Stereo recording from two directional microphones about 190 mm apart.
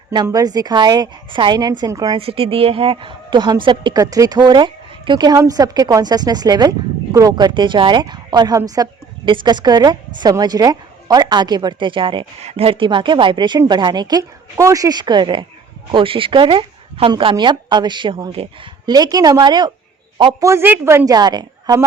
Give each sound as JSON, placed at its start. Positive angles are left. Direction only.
{"t": 0.1, "sound": "a woman's voice", "side_deg": -20}